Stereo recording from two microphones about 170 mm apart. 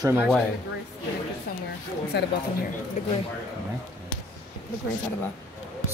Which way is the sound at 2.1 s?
75° left (ahead or behind).